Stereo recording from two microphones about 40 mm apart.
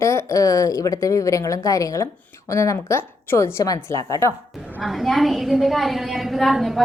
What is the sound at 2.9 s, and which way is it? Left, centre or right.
A woman's voice, left.